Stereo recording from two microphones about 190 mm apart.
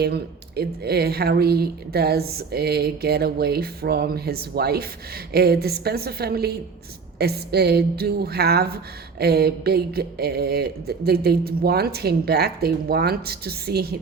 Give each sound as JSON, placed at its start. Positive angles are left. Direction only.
{"t": 0.0, "sound": "a woman's voice", "side_deg": -60}